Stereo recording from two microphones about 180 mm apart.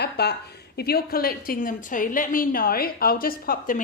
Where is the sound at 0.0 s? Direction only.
65° left (ahead or behind).